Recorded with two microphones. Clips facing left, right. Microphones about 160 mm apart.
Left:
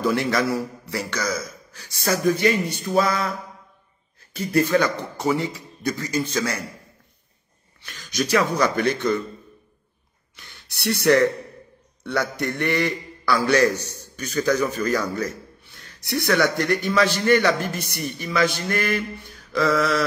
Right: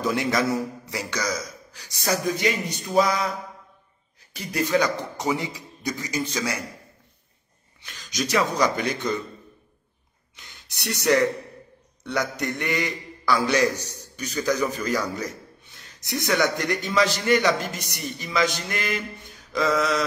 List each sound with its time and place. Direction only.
0.0 s a man's voice: 20° right (ahead or behind)
8.3 s a man's voice: 15° right (ahead or behind)
10.3 s a sound: 20° right (ahead or behind)
11.0 s a man's voice: 15° right (ahead or behind)